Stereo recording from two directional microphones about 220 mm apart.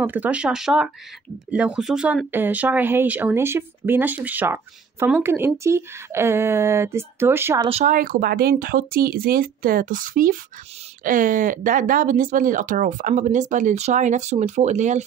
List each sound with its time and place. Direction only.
0.0 s speech: 5° right (ahead or behind)
7.6 s speech: 30° right (ahead or behind)